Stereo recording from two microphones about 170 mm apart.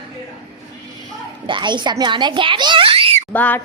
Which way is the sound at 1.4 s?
30° right (ahead or behind).